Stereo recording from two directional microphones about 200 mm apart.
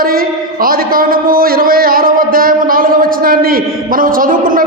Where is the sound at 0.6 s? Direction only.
45° right (ahead or behind).